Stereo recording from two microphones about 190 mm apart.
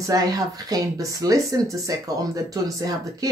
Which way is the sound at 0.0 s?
20° right (ahead or behind).